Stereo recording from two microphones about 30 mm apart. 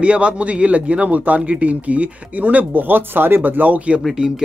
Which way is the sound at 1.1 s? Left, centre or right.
Right.